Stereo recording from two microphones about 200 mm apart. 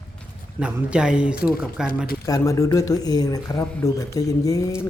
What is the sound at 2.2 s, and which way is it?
A man's voice, 15° left (ahead or behind).